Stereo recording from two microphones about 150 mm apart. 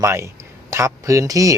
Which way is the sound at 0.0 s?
20° right (ahead or behind).